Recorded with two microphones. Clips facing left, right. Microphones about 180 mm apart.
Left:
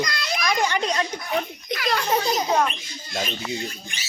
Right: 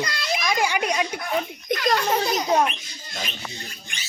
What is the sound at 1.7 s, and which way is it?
Speech, 50° right (ahead or behind).